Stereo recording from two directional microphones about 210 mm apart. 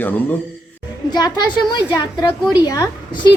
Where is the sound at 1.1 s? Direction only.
20° left (ahead or behind).